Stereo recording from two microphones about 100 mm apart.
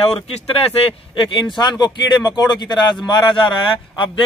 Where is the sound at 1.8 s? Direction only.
45° left (ahead or behind).